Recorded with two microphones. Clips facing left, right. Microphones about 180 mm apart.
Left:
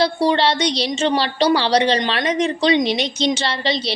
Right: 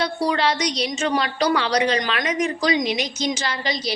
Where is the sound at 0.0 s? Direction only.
30° left (ahead or behind).